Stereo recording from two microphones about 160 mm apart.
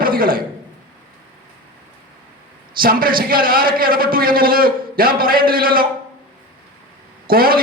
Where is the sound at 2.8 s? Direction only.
65° right (ahead or behind).